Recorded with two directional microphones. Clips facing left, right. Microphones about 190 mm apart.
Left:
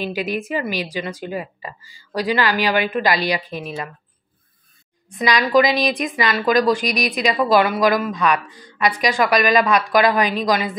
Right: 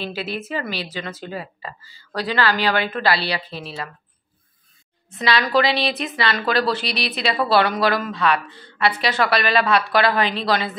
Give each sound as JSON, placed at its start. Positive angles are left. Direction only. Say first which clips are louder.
{"t": 0.0, "sound": "a woman's voice", "louder": "left 4 dB", "side_deg": 15}
{"t": 5.1, "sound": "a woman's voice", "louder": "left 3 dB", "side_deg": 15}